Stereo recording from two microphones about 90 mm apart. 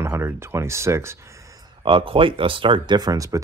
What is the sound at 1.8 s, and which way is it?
Speech, 70° right (ahead or behind).